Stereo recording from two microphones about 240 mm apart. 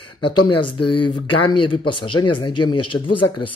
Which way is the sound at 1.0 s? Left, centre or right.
Left.